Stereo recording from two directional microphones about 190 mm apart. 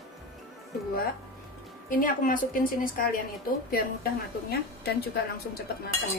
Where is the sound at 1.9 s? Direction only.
45° left (ahead or behind).